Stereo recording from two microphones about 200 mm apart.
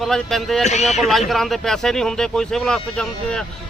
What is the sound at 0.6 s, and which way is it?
Speech, 35° left (ahead or behind).